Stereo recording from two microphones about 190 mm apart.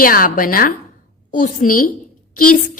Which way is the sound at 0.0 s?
50° left (ahead or behind).